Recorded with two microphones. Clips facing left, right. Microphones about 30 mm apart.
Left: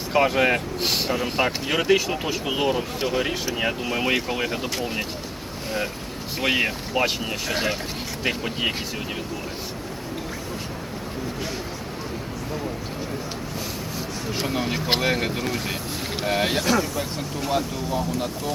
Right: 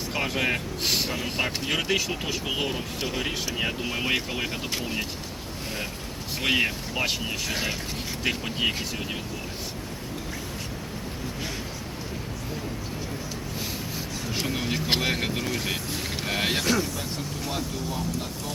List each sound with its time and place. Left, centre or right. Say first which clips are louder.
0.1 s speech: left 8 dB; centre
6.4 s speech: left 2 dB; centre
14.3 s speech: left 3 dB; centre